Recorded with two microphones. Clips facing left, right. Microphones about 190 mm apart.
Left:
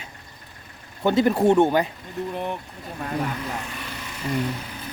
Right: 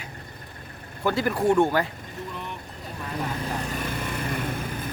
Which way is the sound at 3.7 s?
50° right (ahead or behind).